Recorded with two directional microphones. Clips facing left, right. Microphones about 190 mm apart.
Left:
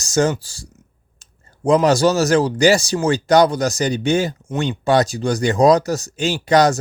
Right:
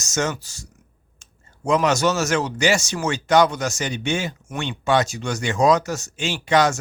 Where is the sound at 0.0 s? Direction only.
35° left (ahead or behind).